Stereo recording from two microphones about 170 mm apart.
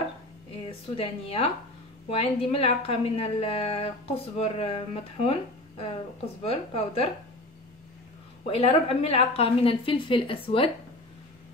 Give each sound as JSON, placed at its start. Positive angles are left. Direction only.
{"t": 0.7, "sound": "a woman's voice", "side_deg": 35}
{"t": 6.4, "sound": "a woman's voice", "side_deg": 35}
{"t": 8.5, "sound": "a woman's voice", "side_deg": 35}